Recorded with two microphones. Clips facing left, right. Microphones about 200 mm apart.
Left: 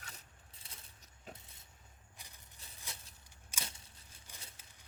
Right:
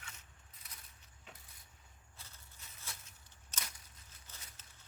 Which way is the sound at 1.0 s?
40° left (ahead or behind).